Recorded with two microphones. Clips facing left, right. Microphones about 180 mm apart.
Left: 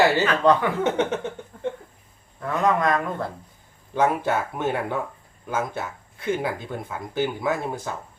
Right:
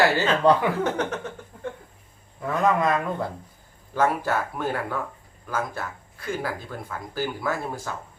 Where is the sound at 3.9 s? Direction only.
20° left (ahead or behind).